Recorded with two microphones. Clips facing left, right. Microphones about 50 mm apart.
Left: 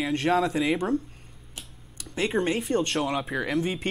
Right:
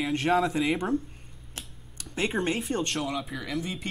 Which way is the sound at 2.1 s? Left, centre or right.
Centre.